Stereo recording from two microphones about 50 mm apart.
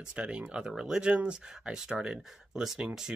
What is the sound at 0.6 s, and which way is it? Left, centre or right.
Speech, centre.